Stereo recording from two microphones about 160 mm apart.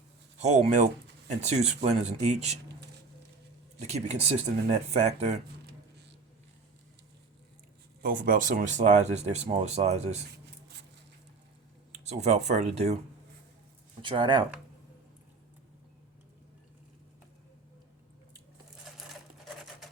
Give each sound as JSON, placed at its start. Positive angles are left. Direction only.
{"t": 0.3, "sound": "speech", "side_deg": -45}
{"t": 3.8, "sound": "speech", "side_deg": -45}
{"t": 8.0, "sound": "speech", "side_deg": -60}
{"t": 11.9, "sound": "a sound", "side_deg": -45}
{"t": 12.5, "sound": "speech", "side_deg": -45}
{"t": 14.0, "sound": "speech", "side_deg": -30}